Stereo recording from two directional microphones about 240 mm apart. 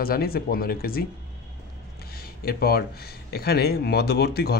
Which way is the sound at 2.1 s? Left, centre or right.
Left.